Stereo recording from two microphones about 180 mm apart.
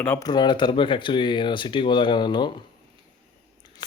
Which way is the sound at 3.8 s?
25° left (ahead or behind).